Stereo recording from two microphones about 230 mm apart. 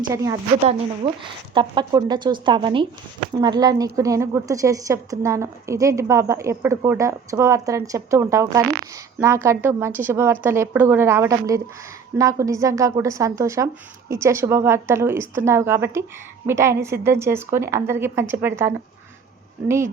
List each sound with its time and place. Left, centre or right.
0.1 s a woman's voice: centre
0.6 s a woman's voice: right